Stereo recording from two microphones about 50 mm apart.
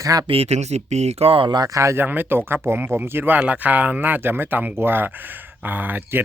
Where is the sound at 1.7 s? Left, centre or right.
Right.